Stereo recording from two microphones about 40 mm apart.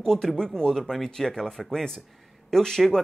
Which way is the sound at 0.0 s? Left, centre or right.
Centre.